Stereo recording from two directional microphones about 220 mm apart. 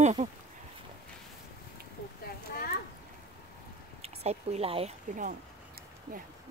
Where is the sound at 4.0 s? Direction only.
30° right (ahead or behind).